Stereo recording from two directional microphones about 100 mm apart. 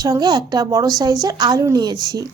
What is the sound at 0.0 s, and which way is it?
A woman's voice, 40° right (ahead or behind).